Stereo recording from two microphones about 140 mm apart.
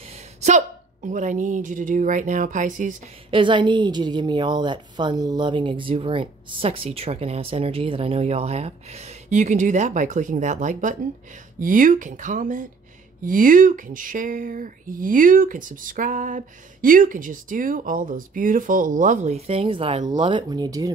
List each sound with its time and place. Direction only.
0.1 s a woman's voice: 55° right (ahead or behind)
3.3 s a woman's voice: 35° right (ahead or behind)